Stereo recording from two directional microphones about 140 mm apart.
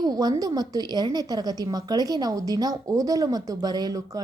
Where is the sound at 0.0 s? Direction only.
25° right (ahead or behind).